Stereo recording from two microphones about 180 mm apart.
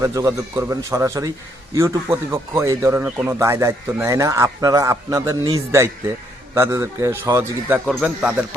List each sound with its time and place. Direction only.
0.0 s a man's voice: 20° right (ahead or behind)